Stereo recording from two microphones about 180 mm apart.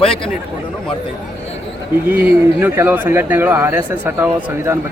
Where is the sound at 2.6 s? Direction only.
10° right (ahead or behind).